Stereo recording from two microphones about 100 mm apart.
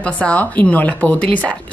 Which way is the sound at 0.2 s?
15° left (ahead or behind).